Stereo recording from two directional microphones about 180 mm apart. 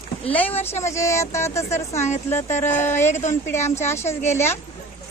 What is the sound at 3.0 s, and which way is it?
Speech, 40° left (ahead or behind).